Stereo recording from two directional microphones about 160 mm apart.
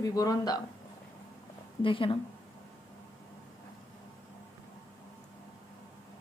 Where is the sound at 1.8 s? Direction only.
30° left (ahead or behind).